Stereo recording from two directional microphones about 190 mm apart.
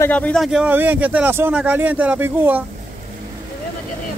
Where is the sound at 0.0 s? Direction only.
5° left (ahead or behind); by 2.6 s 10° right (ahead or behind).